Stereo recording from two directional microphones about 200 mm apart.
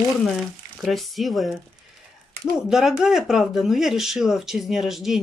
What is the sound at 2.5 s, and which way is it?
Speech, centre (ahead or behind).